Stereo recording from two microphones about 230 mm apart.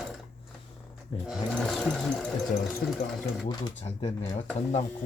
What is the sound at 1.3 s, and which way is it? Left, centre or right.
Sewing machine, centre.